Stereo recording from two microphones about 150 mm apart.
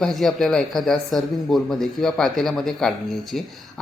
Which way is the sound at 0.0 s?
Centre (ahead or behind).